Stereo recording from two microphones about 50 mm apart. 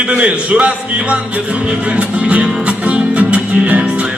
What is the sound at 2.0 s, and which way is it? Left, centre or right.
Music, right.